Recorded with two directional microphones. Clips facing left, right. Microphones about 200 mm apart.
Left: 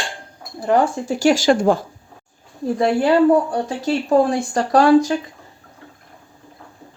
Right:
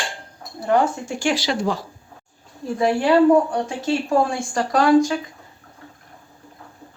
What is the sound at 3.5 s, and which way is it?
Speech, 35° left (ahead or behind).